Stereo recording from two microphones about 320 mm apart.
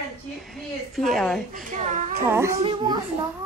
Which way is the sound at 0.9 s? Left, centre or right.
Centre.